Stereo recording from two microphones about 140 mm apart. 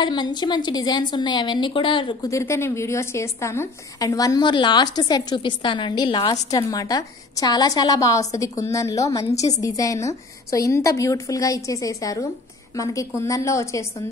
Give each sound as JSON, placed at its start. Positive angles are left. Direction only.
{"t": 0.0, "sound": "a woman's voice", "side_deg": 30}
{"t": 2.2, "sound": "a woman's voice", "side_deg": 20}